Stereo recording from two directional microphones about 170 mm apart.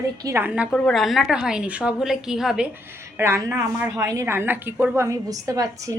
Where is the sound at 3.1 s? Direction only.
15° right (ahead or behind).